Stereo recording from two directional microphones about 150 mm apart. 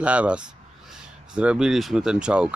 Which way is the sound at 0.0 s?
10° right (ahead or behind).